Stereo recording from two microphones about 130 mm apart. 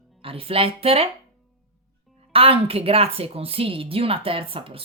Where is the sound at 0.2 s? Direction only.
45° right (ahead or behind).